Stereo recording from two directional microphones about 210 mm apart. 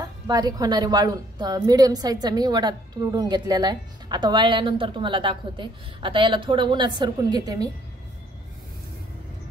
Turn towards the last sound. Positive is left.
turn(degrees=-20)  # may be behind; listen again after turning